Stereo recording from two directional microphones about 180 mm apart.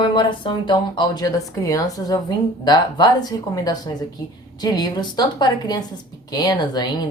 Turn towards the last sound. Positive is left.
turn(degrees=20)  # may be behind; listen again after turning